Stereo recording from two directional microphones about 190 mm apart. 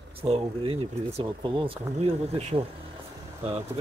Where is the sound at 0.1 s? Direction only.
30° right (ahead or behind).